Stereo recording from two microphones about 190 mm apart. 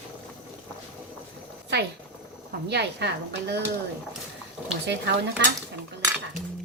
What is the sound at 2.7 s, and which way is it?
Speech, 65° right (ahead or behind).